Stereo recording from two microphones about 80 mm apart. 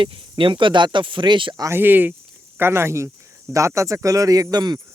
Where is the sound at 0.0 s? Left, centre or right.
Right.